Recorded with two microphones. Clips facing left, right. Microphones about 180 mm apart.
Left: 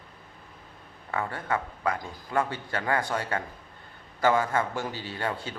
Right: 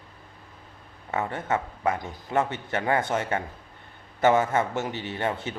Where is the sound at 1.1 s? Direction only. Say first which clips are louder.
Right 3 dB; 20° right (ahead or behind).